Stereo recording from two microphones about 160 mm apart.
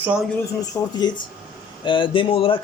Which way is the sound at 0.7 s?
15° left (ahead or behind).